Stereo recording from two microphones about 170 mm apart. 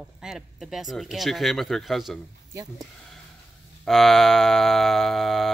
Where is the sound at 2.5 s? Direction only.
20° right (ahead or behind).